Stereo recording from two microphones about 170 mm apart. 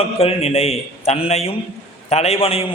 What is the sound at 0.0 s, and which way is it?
A man's voice, 35° left (ahead or behind).